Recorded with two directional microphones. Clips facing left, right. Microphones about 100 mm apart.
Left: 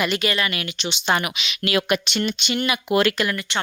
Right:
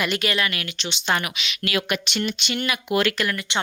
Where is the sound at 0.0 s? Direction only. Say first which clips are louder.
Left 1 dB; centre (ahead or behind).